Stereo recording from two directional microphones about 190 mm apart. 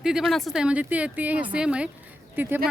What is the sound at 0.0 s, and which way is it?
A woman's voice, centre (ahead or behind).